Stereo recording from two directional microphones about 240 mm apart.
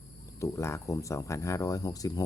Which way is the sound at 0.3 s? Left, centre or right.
Centre.